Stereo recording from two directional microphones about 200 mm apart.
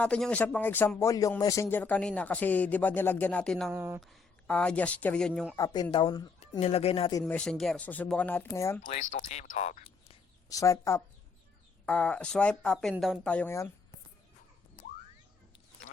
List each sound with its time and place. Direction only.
0.0 s speech: 5° left (ahead or behind)
3.7 s speech: 10° right (ahead or behind)
4.0 s speech: 5° left (ahead or behind)
5.5 s speech: 20° left (ahead or behind)
6.6 s speech: 30° left (ahead or behind)
7.2 s speech: 5° left (ahead or behind)
8.8 s speech: 40° left (ahead or behind)
10.5 s speech: 15° left (ahead or behind)